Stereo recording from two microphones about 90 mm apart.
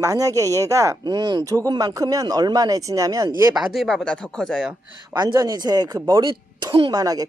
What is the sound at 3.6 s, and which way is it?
Speech, centre (ahead or behind).